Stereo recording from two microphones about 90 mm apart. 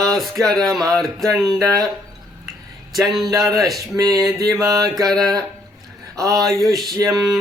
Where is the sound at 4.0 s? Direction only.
40° right (ahead or behind).